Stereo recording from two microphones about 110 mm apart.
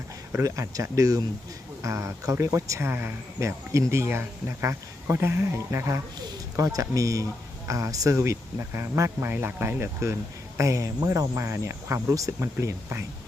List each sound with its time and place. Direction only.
0.3 s speech: 30° right (ahead or behind)